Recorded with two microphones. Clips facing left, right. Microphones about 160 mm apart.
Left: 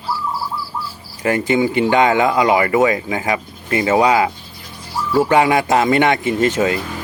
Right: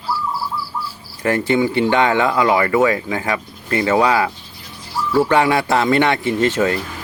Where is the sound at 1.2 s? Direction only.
15° left (ahead or behind).